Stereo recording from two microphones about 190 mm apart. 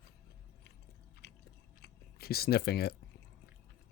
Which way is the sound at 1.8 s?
55° left (ahead or behind).